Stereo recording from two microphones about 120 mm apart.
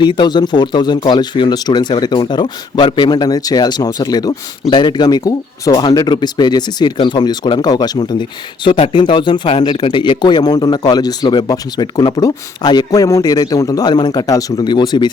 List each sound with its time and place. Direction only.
0.0 s a man's voice: 40° left (ahead or behind)